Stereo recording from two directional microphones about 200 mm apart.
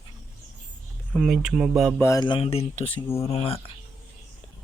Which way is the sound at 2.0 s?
15° left (ahead or behind).